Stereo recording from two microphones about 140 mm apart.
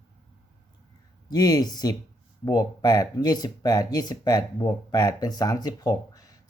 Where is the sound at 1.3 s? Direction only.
30° left (ahead or behind).